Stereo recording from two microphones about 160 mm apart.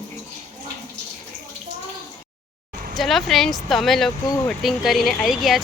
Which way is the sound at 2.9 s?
Centre (ahead or behind).